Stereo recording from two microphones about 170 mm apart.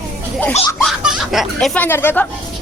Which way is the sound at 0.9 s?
Centre (ahead or behind).